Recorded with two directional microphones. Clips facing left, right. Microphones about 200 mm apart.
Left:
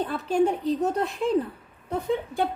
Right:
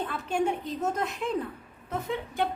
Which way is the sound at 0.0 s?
35° left (ahead or behind).